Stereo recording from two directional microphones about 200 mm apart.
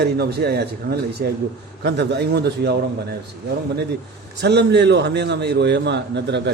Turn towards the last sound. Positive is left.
turn(degrees=-60)  # may be behind; listen again after turning